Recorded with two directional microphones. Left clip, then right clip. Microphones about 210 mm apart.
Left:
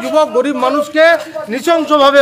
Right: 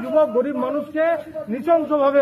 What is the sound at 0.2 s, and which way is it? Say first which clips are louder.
A man's voice: left 7 dB; 35° left (ahead or behind).